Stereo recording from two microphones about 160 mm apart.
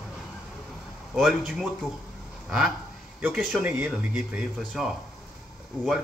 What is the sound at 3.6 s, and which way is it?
Speech, 10° right (ahead or behind).